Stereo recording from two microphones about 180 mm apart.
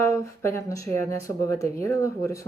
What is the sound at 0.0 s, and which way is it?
Speech, 15° left (ahead or behind).